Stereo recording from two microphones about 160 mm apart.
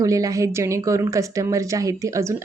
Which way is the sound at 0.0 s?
20° right (ahead or behind).